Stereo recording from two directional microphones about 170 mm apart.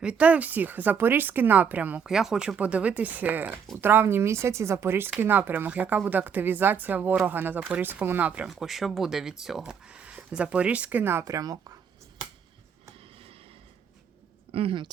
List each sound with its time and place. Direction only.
0.0 s speech: 5° right (ahead or behind)
14.5 s speech: 30° right (ahead or behind)